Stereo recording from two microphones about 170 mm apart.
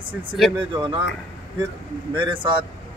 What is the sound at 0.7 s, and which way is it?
Speech, 25° right (ahead or behind).